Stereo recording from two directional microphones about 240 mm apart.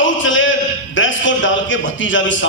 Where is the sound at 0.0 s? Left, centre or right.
Left.